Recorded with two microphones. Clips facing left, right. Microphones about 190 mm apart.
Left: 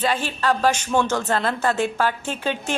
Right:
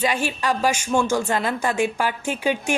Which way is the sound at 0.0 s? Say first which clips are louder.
Even; 10° right (ahead or behind).